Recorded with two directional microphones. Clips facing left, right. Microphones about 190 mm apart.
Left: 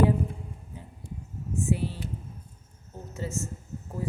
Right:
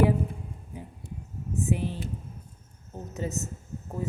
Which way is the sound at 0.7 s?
15° right (ahead or behind).